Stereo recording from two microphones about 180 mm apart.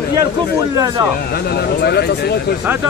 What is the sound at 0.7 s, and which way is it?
Speech, 20° right (ahead or behind).